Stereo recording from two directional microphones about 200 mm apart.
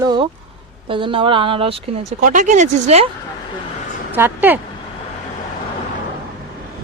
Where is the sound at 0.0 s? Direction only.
20° right (ahead or behind).